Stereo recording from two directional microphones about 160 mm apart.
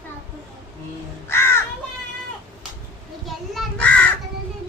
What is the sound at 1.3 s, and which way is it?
Music, 15° left (ahead or behind).